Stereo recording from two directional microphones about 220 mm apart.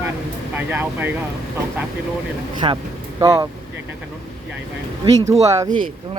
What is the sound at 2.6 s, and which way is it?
Speech, 25° right (ahead or behind).